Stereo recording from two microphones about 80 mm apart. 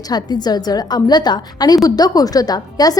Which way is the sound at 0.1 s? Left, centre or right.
Left.